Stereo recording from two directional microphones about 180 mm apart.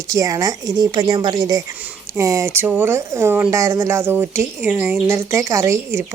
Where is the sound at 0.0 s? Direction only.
20° right (ahead or behind).